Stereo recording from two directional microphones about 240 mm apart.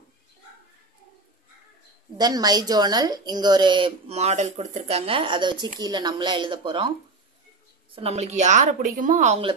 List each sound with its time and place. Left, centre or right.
2.1 s speech: centre
7.9 s speech: right